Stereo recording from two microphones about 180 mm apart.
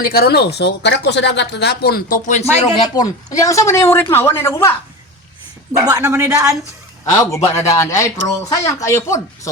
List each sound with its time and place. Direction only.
0.0 s speech: 60° left (ahead or behind)
2.7 s speech: 25° left (ahead or behind)
5.7 s speech: 15° right (ahead or behind)
7.0 s speech: 15° left (ahead or behind)